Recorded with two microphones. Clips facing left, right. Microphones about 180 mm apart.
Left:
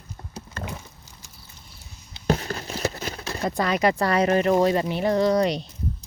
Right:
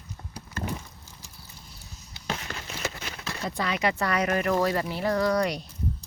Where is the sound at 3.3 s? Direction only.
45° left (ahead or behind).